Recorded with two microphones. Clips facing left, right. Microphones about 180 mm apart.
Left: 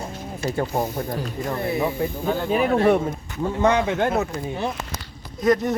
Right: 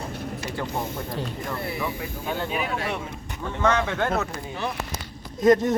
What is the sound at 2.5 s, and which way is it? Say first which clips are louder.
Speech: left 10 dB; 45° left (ahead or behind).